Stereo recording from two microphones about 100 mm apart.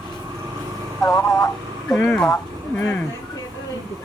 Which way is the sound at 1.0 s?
30° left (ahead or behind).